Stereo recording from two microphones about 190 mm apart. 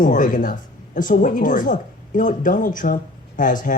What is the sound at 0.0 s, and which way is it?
Speech, 45° left (ahead or behind).